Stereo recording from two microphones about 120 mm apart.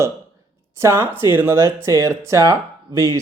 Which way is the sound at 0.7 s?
25° right (ahead or behind).